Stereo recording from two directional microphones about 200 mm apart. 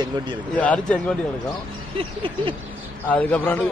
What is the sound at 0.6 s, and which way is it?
Speech, 5° left (ahead or behind).